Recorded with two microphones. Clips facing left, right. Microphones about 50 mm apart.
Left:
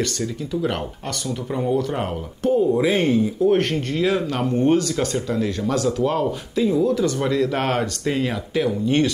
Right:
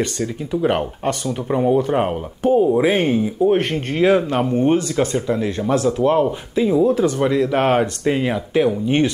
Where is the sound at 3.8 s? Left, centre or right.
Right.